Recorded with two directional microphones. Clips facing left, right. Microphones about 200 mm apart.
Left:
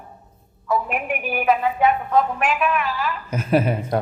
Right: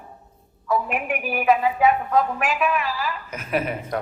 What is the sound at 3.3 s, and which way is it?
Speech, 30° left (ahead or behind).